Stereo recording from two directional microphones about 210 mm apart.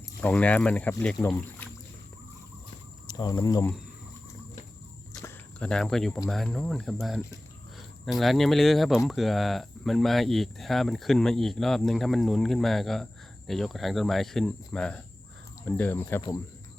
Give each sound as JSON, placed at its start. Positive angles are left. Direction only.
{"t": 0.2, "sound": "speech", "side_deg": 5}
{"t": 3.1, "sound": "speech", "side_deg": 20}
{"t": 5.2, "sound": "a sound", "side_deg": 5}
{"t": 6.2, "sound": "speech", "side_deg": 0}